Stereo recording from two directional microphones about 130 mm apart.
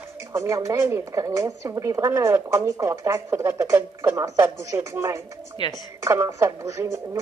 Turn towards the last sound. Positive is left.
turn(degrees=-20)  # may be behind; listen again after turning